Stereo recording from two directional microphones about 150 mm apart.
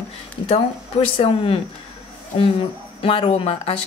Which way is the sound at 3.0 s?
40° left (ahead or behind).